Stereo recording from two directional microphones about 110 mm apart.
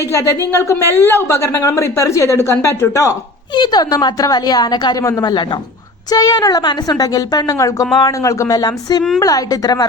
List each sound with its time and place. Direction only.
0.1 s speech: 25° left (ahead or behind)
3.5 s a woman's voice: 40° left (ahead or behind)
5.0 s speech: 30° left (ahead or behind)
5.3 s a woman's voice: 45° left (ahead or behind)
6.1 s a woman's voice: 35° left (ahead or behind)